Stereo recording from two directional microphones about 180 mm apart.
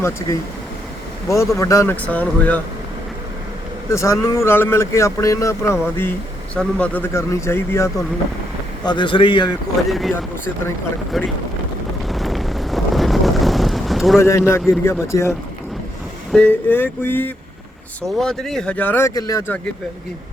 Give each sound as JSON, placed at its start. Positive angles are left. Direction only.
{"t": 1.3, "sound": "speech", "side_deg": 15}
{"t": 3.8, "sound": "speech", "side_deg": 15}
{"t": 8.8, "sound": "a man's voice", "side_deg": 25}
{"t": 11.1, "sound": "speech", "side_deg": 0}
{"t": 12.0, "sound": "vehicle", "side_deg": 0}
{"t": 14.2, "sound": "speech", "side_deg": 15}